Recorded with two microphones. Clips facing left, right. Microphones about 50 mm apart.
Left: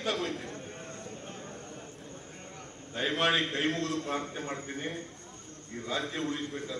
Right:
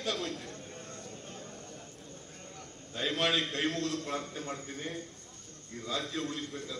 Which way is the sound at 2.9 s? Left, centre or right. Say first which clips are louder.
Left 2 dB; left.